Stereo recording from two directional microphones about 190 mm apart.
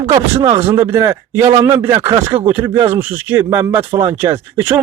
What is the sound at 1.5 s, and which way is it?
Speech, 30° right (ahead or behind).